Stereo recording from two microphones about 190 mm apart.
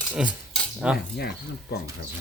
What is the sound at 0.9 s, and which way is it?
Speech, 55° left (ahead or behind).